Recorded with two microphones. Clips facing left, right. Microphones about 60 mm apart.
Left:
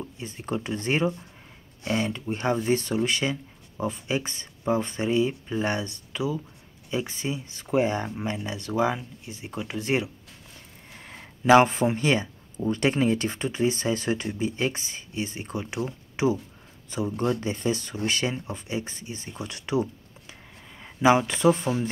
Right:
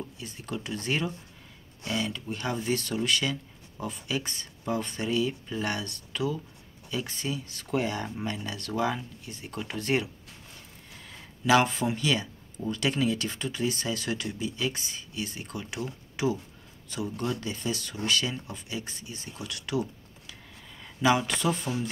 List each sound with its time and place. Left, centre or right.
0.2 s speech: left; by 10.1 s centre
10.9 s speech: left